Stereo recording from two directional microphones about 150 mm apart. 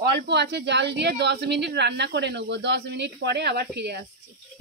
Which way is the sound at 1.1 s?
90° right.